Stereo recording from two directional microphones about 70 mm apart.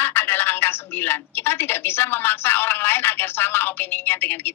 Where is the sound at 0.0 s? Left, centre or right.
Left.